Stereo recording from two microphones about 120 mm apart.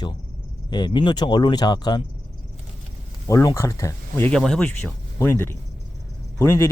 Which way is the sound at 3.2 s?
30° left (ahead or behind).